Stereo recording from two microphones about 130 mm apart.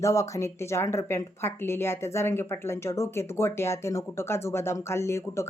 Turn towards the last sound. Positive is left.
turn(degrees=20)  # may be behind; listen again after turning